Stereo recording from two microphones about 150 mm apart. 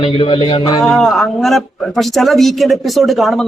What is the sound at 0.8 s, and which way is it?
Speech, 5° left (ahead or behind).